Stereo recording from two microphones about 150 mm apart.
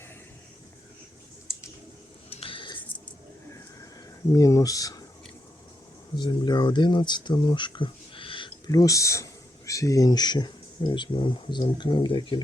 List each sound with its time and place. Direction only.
2.3 s a sound: 40° left (ahead or behind)
4.3 s speech: 20° left (ahead or behind)
6.1 s speech: 30° left (ahead or behind)